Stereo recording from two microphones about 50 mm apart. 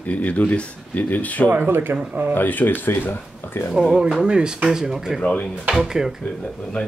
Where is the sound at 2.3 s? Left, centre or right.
Left.